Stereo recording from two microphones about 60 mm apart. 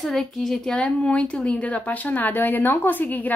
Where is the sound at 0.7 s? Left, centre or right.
Centre.